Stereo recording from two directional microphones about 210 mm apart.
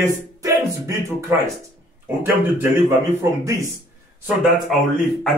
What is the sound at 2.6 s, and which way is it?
Speech, 10° right (ahead or behind).